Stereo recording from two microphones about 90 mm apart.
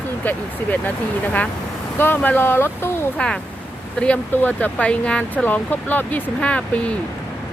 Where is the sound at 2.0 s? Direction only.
25° left (ahead or behind).